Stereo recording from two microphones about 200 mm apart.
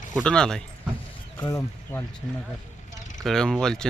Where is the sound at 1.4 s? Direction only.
15° left (ahead or behind).